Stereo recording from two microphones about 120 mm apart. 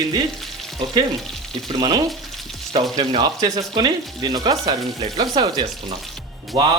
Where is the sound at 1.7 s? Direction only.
30° right (ahead or behind).